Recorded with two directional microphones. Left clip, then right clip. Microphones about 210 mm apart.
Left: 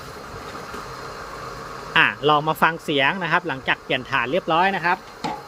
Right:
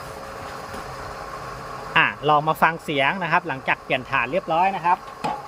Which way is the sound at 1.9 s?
10° left (ahead or behind).